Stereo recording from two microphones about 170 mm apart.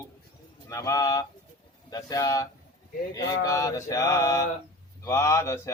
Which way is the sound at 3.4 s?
20° left (ahead or behind).